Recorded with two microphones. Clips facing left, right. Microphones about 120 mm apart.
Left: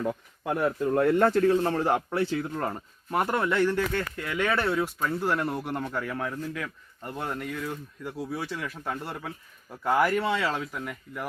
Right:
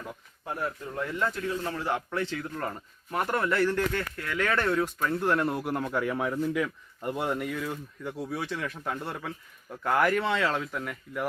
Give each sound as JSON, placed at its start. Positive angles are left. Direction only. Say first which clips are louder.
{"t": 0.0, "sound": "speech", "louder": "left 10 dB", "side_deg": 75}
{"t": 1.5, "sound": "a man's voice", "louder": "left 6 dB", "side_deg": 40}
{"t": 2.3, "sound": "speech", "louder": "left 4 dB", "side_deg": 30}